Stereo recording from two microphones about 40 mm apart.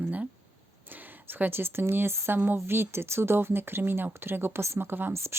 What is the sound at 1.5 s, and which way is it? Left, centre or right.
Speech, right.